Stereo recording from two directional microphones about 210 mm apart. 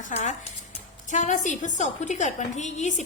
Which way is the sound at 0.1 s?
35° left (ahead or behind).